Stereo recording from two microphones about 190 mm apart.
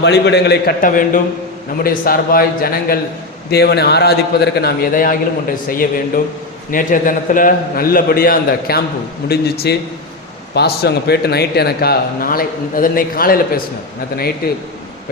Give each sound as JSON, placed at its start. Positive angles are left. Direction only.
{"t": 0.0, "sound": "a man's voice", "side_deg": 65}